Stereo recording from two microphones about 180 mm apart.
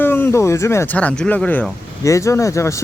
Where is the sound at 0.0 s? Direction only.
10° left (ahead or behind).